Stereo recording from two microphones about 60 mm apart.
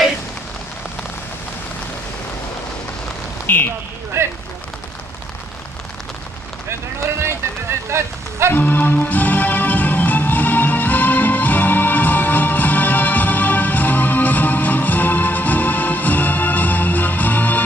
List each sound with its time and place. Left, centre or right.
3.4 s speech: left
4.1 s speech: right
7.9 s speech: right
8.5 s music: left